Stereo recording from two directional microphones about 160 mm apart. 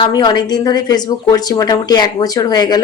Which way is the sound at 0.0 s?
25° left (ahead or behind).